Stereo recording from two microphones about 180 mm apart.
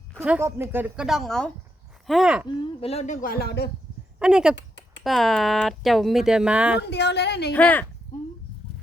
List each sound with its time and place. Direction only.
0.1 s speech: 15° right (ahead or behind)
2.8 s speech: 35° left (ahead or behind); by 3.7 s 65° left (ahead or behind)
4.2 s speech: 5° right (ahead or behind)
4.5 s a sound: 80° left
5.0 s speech: centre (ahead or behind)
6.8 s a woman's voice: 70° left (ahead or behind)
7.5 s speech: 10° left (ahead or behind)